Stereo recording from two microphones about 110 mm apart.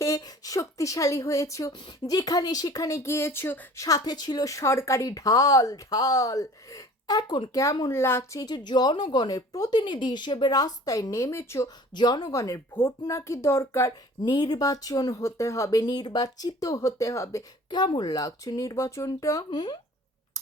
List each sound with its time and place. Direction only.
0.0 s a woman's voice: 35° left (ahead or behind)
1.7 s speech: 45° left (ahead or behind); by 3.7 s 20° left (ahead or behind)
3.8 s speech: 35° left (ahead or behind)
7.6 s speech: 30° left (ahead or behind)
8.4 s speech: 40° left (ahead or behind)
11.9 s speech: 40° left (ahead or behind)
14.2 s speech: 40° left (ahead or behind)
17.7 s speech: 40° left (ahead or behind)
19.5 s speech: 45° left (ahead or behind)